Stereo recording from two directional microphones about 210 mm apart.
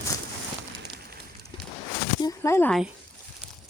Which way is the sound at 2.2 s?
15° left (ahead or behind).